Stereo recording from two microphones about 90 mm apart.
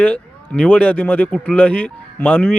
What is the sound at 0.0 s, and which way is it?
Speech, 10° left (ahead or behind).